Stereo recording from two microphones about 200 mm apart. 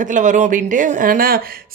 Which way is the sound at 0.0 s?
40° right (ahead or behind).